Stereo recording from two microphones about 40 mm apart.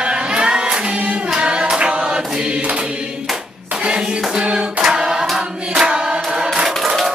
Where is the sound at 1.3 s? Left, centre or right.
Right.